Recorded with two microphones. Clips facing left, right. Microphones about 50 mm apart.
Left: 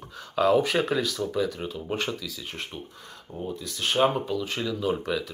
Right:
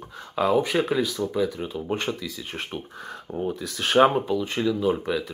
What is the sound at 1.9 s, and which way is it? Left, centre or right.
Speech, right.